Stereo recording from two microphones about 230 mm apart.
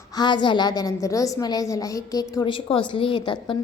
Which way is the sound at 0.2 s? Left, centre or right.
Centre.